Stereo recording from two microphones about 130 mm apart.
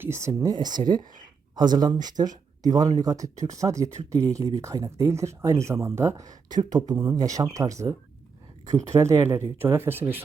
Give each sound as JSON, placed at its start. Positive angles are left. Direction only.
{"t": 0.0, "sound": "speech", "side_deg": -20}